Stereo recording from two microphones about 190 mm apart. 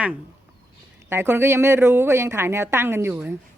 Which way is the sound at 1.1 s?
10° right (ahead or behind).